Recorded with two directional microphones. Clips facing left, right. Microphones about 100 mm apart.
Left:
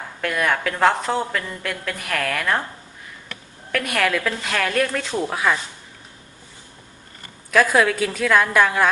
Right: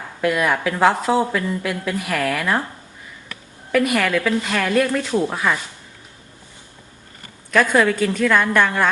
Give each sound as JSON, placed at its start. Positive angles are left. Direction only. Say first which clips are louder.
{"t": 0.2, "sound": "a woman's voice", "louder": "right 3 dB", "side_deg": -5}
{"t": 3.7, "sound": "a woman's voice", "louder": "right 4 dB", "side_deg": -5}
{"t": 7.5, "sound": "a woman's voice", "louder": "right 1 dB", "side_deg": 5}